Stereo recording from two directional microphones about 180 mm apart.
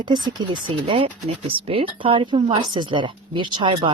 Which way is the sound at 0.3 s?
25° right (ahead or behind).